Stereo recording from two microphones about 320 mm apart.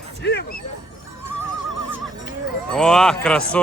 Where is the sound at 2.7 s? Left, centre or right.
Centre.